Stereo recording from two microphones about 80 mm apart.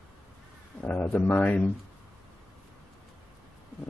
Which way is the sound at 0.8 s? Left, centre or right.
Centre.